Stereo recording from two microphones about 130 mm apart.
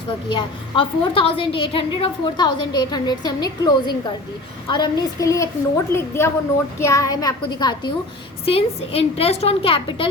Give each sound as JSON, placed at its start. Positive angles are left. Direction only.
{"t": 0.3, "sound": "a woman's voice", "side_deg": 40}
{"t": 8.4, "sound": "a woman's voice", "side_deg": 50}